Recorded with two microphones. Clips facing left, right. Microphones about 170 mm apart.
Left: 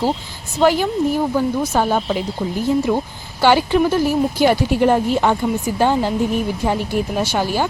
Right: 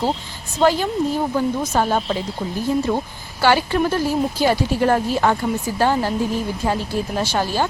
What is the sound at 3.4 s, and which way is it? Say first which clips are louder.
Speech: left 3 dB; 15° left (ahead or behind).